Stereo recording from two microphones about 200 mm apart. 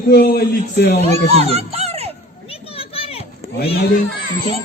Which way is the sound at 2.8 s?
30° left (ahead or behind).